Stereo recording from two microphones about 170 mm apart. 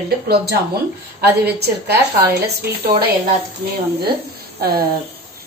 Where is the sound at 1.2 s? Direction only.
65° right (ahead or behind).